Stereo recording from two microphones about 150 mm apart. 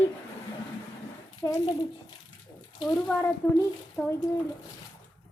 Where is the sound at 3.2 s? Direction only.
15° left (ahead or behind).